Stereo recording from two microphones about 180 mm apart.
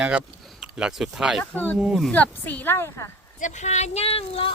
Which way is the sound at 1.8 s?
Centre (ahead or behind).